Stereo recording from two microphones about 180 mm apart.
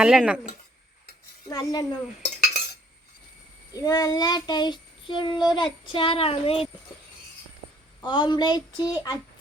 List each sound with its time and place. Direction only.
0.0 s speech: 5° right (ahead or behind)
1.5 s child singing: 20° left (ahead or behind)
3.7 s child singing: 20° left (ahead or behind)
8.0 s child singing: 25° left (ahead or behind)